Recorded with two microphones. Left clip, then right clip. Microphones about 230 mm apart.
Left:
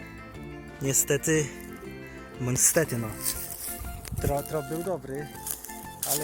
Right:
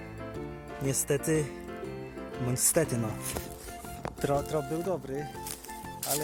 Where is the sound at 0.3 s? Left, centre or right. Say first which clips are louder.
Right 1 dB; centre.